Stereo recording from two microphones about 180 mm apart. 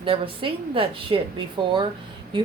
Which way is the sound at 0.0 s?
30° right (ahead or behind).